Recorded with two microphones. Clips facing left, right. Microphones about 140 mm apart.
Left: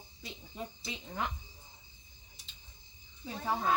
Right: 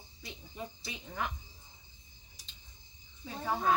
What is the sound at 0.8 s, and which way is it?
Speech, 20° left (ahead or behind).